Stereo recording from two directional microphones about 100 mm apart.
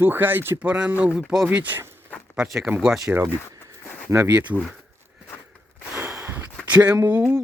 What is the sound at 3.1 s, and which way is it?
Speech, 30° right (ahead or behind).